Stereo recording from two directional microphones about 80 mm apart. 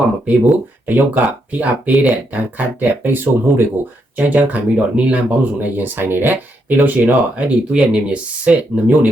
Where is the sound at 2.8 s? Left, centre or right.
Right.